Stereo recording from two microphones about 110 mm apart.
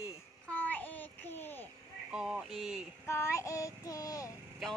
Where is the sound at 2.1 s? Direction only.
5° right (ahead or behind).